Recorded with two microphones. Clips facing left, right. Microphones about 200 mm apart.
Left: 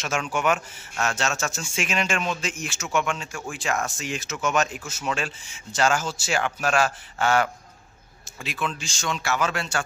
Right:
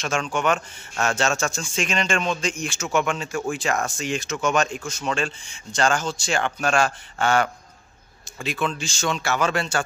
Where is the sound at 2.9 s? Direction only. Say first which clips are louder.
Right 3 dB; 35° right (ahead or behind).